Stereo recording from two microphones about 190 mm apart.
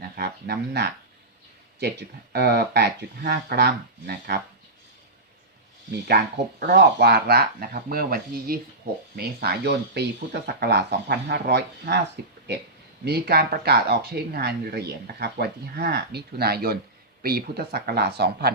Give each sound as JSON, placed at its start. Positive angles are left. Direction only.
{"t": 0.2, "sound": "speech", "side_deg": -55}
{"t": 6.6, "sound": "speech", "side_deg": -55}
{"t": 13.1, "sound": "speech", "side_deg": -55}